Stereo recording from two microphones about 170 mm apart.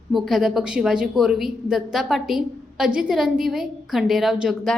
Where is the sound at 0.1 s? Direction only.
Centre (ahead or behind).